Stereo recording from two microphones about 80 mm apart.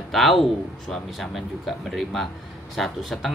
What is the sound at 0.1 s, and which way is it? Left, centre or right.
Speech, centre.